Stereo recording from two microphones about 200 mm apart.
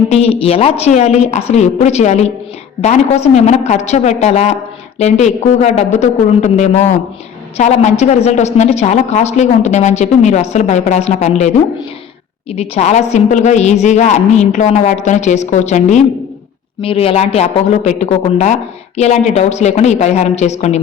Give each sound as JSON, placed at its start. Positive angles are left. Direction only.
{"t": 0.1, "sound": "a woman's voice", "side_deg": 30}